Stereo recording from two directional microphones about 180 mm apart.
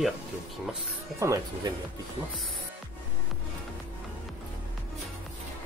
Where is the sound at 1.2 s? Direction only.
20° right (ahead or behind).